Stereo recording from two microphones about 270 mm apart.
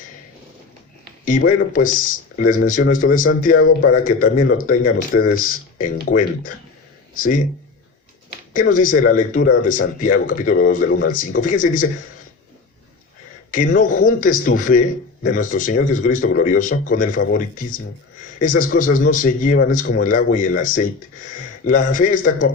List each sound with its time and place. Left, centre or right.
1.2 s speech: left
8.5 s a man's voice: left
13.5 s a man's voice: left